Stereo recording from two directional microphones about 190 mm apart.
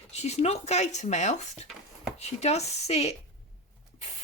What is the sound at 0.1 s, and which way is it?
Speech, 35° left (ahead or behind).